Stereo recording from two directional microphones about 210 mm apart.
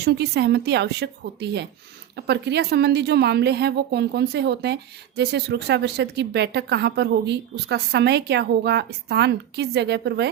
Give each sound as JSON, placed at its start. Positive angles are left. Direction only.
{"t": 0.0, "sound": "a woman's voice", "side_deg": -50}